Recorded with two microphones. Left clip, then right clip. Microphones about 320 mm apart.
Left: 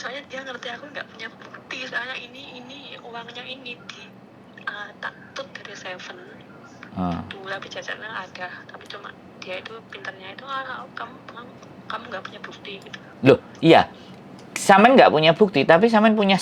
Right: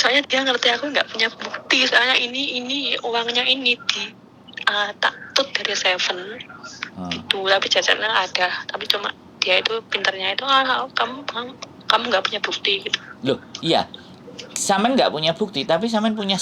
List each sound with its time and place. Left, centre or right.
0.0 s speech: right
13.2 s speech: left
14.9 s speech: left